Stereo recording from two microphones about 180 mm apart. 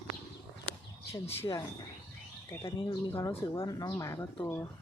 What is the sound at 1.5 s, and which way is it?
A woman's voice, 20° left (ahead or behind).